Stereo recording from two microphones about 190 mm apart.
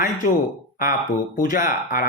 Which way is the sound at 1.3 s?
45° left (ahead or behind).